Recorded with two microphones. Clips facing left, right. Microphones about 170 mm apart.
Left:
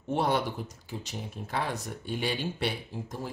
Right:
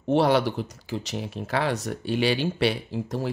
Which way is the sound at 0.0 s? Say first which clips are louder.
Right 7 dB; 85° right.